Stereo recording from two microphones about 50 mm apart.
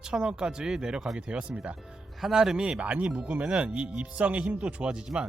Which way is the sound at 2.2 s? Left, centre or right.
Centre.